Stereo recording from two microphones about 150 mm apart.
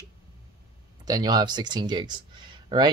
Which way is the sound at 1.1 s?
25° right (ahead or behind).